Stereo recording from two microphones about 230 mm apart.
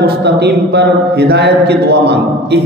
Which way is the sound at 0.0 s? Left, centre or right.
Right.